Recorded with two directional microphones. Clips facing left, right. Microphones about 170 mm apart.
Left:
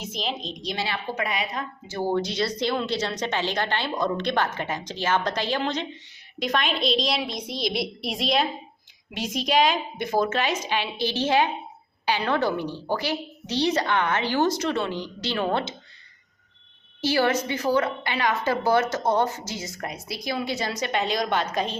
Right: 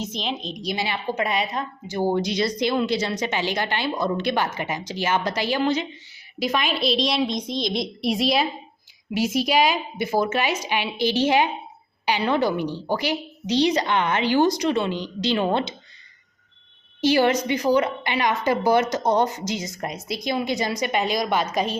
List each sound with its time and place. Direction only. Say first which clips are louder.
0.0 s a woman's voice: right 2 dB; 5° left (ahead or behind); by 15.7 s 20° right (ahead or behind)
17.0 s a woman's voice: right 4 dB; 20° right (ahead or behind)